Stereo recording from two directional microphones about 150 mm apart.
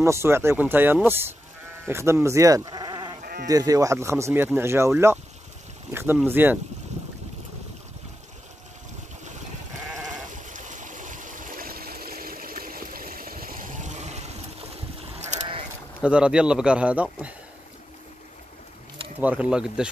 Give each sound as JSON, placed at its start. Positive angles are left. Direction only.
{"t": 0.0, "sound": "speech", "side_deg": -15}
{"t": 6.2, "sound": "speech", "side_deg": -15}
{"t": 10.3, "sound": "stream", "side_deg": -55}
{"t": 15.1, "sound": "sheep", "side_deg": -50}
{"t": 16.0, "sound": "speech", "side_deg": -5}
{"t": 19.1, "sound": "speech", "side_deg": -10}